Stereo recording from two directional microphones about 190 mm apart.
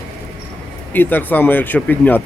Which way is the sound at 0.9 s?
10° left (ahead or behind).